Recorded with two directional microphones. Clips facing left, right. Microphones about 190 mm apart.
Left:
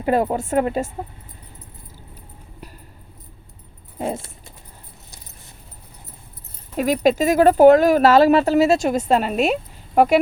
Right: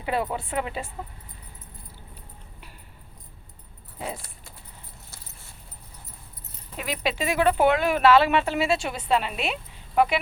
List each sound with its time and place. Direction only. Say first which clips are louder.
0.0 s speech: left 8 dB; 45° left (ahead or behind)
3.9 s speech: left 9 dB; 50° left (ahead or behind)
6.7 s speech: left 11 dB; 45° left (ahead or behind)